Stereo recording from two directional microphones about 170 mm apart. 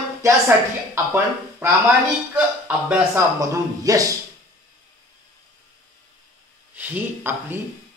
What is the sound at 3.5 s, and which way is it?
Speech, 20° right (ahead or behind).